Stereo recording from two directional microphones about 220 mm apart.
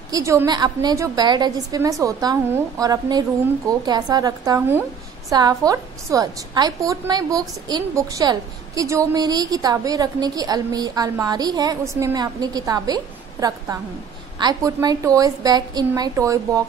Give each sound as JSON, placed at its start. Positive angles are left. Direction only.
{"t": 0.1, "sound": "a woman's voice", "side_deg": -15}